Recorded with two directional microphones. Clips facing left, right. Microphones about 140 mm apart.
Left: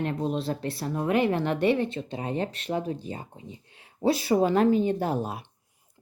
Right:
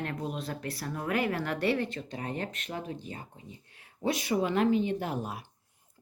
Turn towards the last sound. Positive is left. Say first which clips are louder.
# left 6 dB
turn(degrees=25)  # may be behind; listen again after turning